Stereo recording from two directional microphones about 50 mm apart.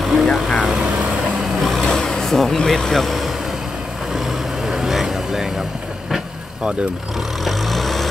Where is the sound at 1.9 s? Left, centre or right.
Centre.